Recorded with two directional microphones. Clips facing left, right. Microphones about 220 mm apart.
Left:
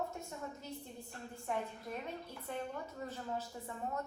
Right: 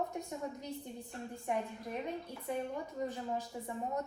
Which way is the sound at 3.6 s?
15° right (ahead or behind).